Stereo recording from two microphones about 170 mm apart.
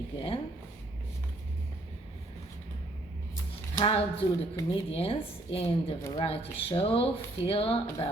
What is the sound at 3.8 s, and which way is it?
Speech, 35° left (ahead or behind).